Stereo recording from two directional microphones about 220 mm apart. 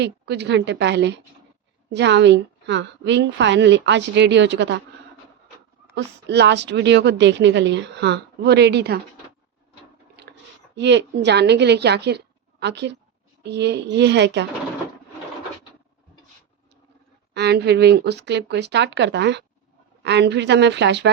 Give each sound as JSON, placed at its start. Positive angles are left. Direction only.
{"t": 0.0, "sound": "a woman's voice", "side_deg": -50}
{"t": 5.9, "sound": "a woman's voice", "side_deg": -50}
{"t": 10.8, "sound": "a woman's voice", "side_deg": -55}
{"t": 17.3, "sound": "a woman's voice", "side_deg": -50}